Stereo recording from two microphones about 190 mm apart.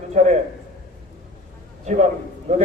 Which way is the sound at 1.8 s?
40° right (ahead or behind).